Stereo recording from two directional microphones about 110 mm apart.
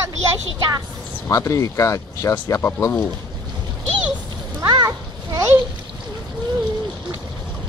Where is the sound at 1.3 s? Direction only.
30° left (ahead or behind).